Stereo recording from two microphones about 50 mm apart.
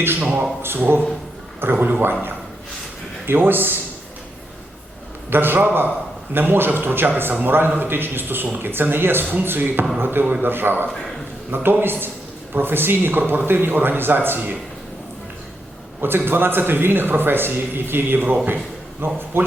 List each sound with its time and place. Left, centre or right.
0.2 s a man's voice: right
3.2 s a man's voice: right
5.3 s a man's voice: right
16.0 s a man's voice: right